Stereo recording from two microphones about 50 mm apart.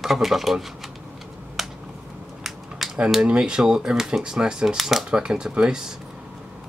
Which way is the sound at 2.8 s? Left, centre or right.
Centre.